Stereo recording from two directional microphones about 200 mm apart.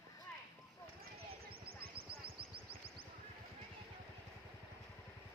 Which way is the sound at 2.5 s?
25° right (ahead or behind).